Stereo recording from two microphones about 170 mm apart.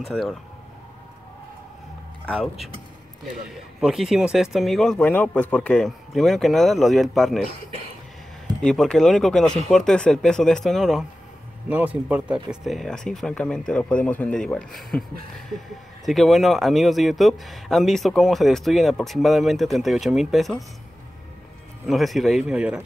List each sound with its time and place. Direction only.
0.0 s a man's voice: centre (ahead or behind)
2.2 s a man's voice: centre (ahead or behind)
3.8 s a man's voice: centre (ahead or behind)
8.5 s a man's voice: 5° left (ahead or behind)
16.1 s a man's voice: centre (ahead or behind)
21.8 s a man's voice: centre (ahead or behind)